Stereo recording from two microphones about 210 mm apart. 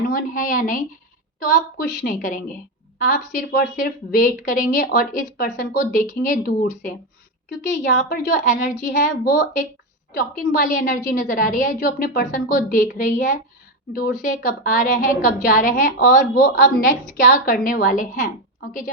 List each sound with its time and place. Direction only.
0.1 s a woman's voice: 40° left (ahead or behind)